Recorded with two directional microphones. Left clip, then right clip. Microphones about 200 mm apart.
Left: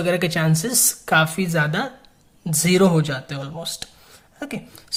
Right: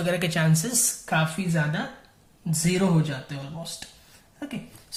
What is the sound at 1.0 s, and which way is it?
A woman's voice, 45° left (ahead or behind).